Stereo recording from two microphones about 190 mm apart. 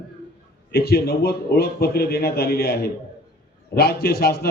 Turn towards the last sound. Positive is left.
turn(degrees=55)  # may be behind; listen again after turning